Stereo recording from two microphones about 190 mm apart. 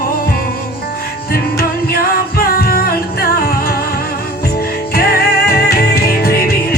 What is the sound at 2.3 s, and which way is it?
Music, 50° left (ahead or behind).